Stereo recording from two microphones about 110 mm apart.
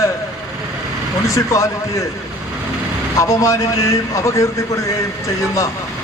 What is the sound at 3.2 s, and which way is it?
A man's voice, 30° left (ahead or behind).